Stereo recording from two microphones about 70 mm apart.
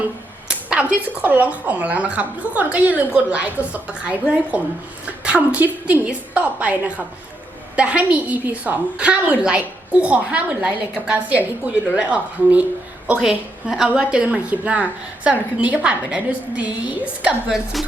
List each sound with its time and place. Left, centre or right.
0.4 s a woman's voice: centre
5.2 s a woman's voice: centre
13.1 s a woman's voice: centre
17.5 s a woman's voice: centre